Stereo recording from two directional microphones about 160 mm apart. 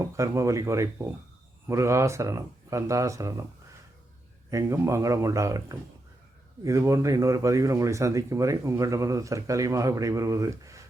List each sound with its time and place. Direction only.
0.0 s speech: 20° right (ahead or behind)
4.5 s speech: 15° right (ahead or behind)